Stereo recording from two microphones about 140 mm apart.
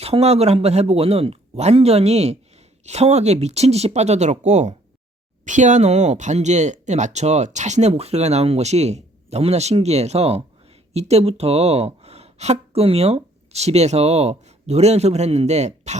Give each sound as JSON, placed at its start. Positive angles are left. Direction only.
{"t": 0.0, "sound": "speech", "side_deg": -45}